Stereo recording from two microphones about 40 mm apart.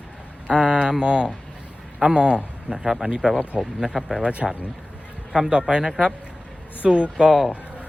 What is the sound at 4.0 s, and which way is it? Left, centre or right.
Speech, centre.